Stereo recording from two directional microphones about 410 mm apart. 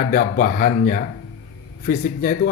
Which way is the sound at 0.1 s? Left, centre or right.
Centre.